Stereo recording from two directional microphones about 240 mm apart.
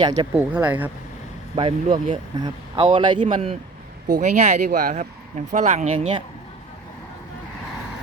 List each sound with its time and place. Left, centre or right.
0.0 s a man's voice: centre
0.3 s speech: centre
1.5 s a man's voice: right